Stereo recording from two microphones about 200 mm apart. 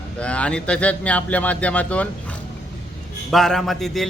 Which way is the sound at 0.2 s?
5° left (ahead or behind).